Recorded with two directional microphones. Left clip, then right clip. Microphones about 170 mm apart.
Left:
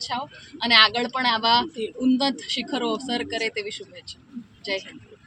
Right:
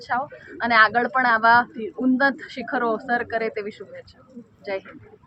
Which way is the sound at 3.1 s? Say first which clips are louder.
Right 3 dB; 25° left (ahead or behind).